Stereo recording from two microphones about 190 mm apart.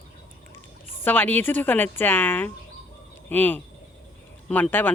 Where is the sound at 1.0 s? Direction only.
10° left (ahead or behind).